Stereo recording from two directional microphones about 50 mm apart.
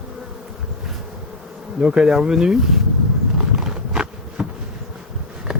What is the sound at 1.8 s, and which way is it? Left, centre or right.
Speech, centre.